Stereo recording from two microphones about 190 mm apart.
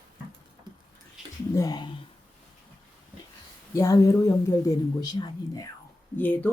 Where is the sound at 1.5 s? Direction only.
20° left (ahead or behind).